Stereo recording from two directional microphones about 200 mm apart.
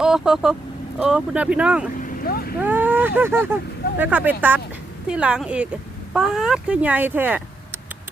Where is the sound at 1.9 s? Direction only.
45° left (ahead or behind).